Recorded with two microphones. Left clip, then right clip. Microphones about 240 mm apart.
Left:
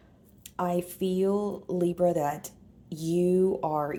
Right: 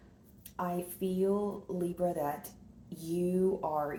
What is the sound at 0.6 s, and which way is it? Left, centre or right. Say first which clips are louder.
Speech: left 7 dB; left.